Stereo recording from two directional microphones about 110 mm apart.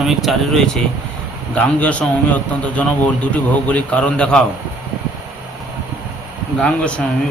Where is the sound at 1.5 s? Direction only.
10° left (ahead or behind).